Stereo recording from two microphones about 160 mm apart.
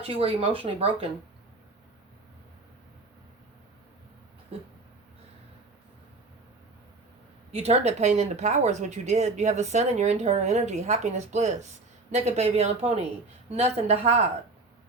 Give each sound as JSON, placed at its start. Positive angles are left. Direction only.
{"t": 0.0, "sound": "speech", "side_deg": -35}
{"t": 7.5, "sound": "speech", "side_deg": -40}